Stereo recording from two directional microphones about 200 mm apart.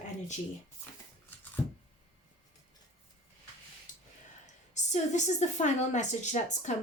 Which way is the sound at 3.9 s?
40° left (ahead or behind).